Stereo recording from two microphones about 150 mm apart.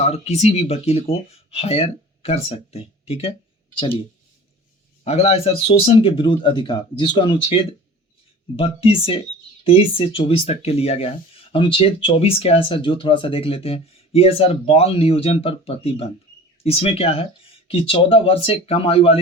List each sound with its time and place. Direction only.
0.0 s speech: 45° left (ahead or behind)
5.0 s speech: 40° left (ahead or behind)